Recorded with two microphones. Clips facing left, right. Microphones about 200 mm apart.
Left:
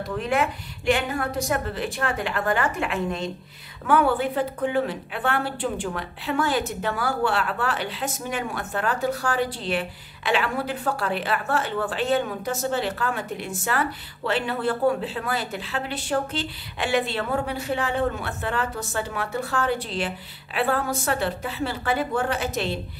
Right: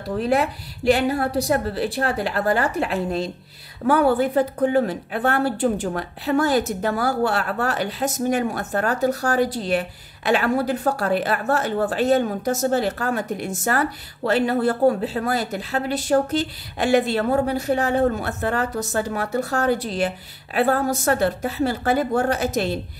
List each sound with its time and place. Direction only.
0.1 s a woman's voice: 35° right (ahead or behind)